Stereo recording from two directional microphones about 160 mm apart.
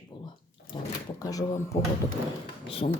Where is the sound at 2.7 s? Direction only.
35° left (ahead or behind).